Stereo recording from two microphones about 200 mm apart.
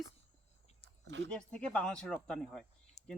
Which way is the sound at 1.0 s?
65° right (ahead or behind).